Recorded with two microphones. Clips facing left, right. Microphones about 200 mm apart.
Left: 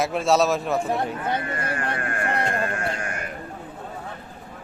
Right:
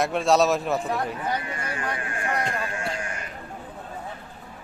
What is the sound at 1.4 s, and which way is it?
Speech, 55° left (ahead or behind).